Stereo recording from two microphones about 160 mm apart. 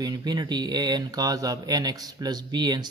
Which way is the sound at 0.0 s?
25° right (ahead or behind).